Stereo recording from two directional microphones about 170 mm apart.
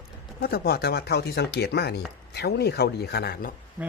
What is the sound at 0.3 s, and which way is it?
Speech, 65° left (ahead or behind).